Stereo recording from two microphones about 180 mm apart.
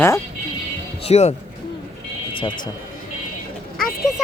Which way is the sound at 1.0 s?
35° left (ahead or behind).